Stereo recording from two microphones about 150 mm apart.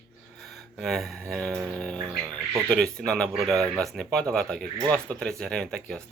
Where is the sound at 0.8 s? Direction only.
Centre (ahead or behind).